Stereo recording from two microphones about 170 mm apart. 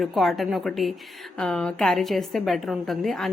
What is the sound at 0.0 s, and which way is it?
Speech, centre (ahead or behind).